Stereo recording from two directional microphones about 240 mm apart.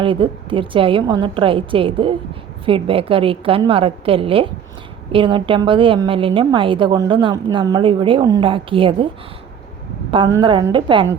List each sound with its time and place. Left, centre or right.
0.0 s a woman's voice: right
10.3 s a woman's voice: centre